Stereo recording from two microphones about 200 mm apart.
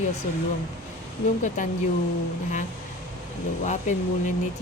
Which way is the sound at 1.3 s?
40° left (ahead or behind).